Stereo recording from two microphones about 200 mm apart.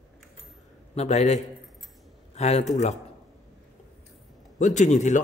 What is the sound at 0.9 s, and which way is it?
A man's voice, 35° left (ahead or behind).